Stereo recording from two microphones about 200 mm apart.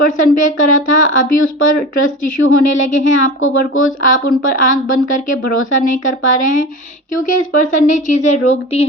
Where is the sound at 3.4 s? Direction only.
85° left.